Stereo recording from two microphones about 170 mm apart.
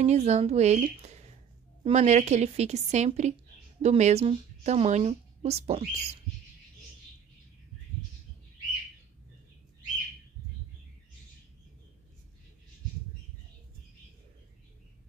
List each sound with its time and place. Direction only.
0.0 s a woman's voice: 40° right (ahead or behind)